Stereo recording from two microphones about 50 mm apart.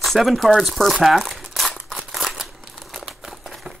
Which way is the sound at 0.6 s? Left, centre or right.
Centre.